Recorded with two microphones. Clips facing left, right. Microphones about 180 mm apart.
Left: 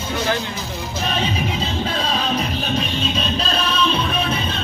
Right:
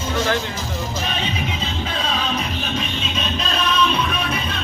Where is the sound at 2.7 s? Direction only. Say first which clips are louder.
Left 3 dB; 35° left (ahead or behind).